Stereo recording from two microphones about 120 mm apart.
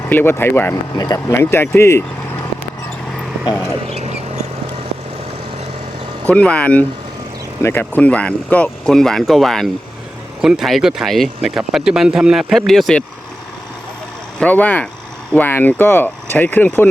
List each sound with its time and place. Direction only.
0.0 s speech: 15° left (ahead or behind)
0.9 s speech: 35° left (ahead or behind)
1.3 s speech: 20° left (ahead or behind)
3.8 s a sound: 60° right (ahead or behind)
6.3 s speech: 10° left (ahead or behind)
14.3 s speech: 10° left (ahead or behind)